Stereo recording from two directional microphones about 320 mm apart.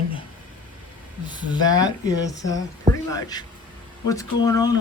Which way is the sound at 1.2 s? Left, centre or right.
Centre.